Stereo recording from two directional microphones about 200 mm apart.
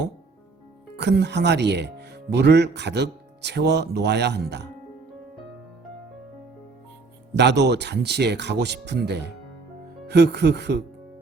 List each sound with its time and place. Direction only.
0.9 s speech: 55° right (ahead or behind)
7.3 s speech: 60° right (ahead or behind)